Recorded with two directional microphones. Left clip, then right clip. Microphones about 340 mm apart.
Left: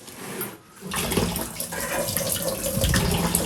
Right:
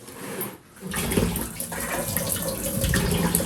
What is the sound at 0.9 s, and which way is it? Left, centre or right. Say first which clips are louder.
Toilet flush: left 1 dB; centre.